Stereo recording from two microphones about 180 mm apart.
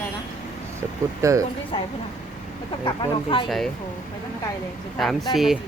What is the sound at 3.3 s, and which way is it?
Speech, 30° left (ahead or behind).